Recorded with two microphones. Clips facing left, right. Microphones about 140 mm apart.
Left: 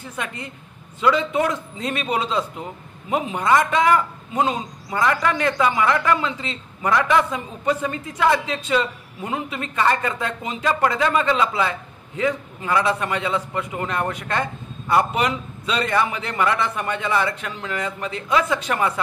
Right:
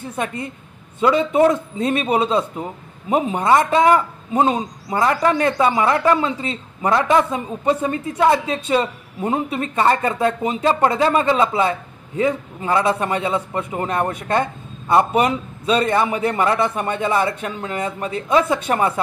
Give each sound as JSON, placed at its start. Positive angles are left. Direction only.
{"t": 0.0, "sound": "a man's voice", "side_deg": -25}